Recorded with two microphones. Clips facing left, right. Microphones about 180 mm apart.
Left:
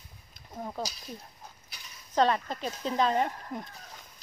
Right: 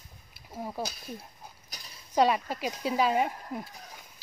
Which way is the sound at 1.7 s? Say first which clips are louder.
Right 3 dB; 40° right (ahead or behind).